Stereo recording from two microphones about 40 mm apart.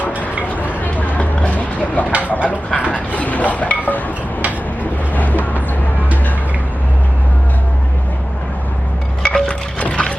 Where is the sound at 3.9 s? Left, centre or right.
Left.